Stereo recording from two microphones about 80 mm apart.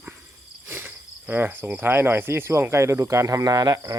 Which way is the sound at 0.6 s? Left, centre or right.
Right.